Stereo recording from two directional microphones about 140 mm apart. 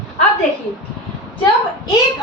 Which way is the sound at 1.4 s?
30° left (ahead or behind).